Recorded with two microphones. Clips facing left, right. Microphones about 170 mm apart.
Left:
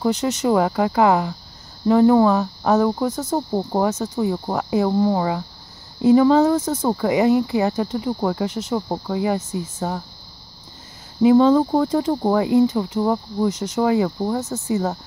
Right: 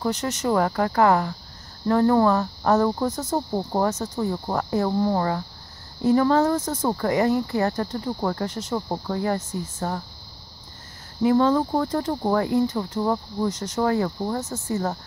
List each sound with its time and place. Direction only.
0.0 s speech: 15° left (ahead or behind)
11.2 s speech: 15° left (ahead or behind)